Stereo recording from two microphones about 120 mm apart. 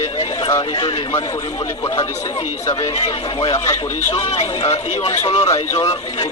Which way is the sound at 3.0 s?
50° left (ahead or behind).